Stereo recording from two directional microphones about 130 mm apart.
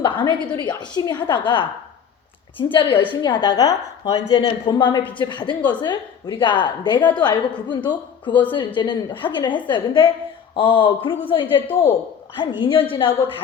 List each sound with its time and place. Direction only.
0.0 s a woman's voice: 40° left (ahead or behind)
4.4 s a woman's voice: 40° left (ahead or behind)